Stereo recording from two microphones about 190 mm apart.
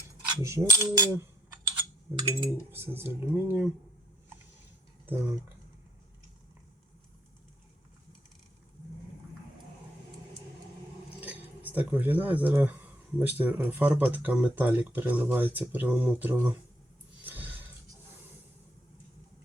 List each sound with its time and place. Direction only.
0.4 s speech: 15° right (ahead or behind)
5.0 s speech: 15° right (ahead or behind)
11.2 s speech: 10° right (ahead or behind)
17.2 s music: 10° right (ahead or behind)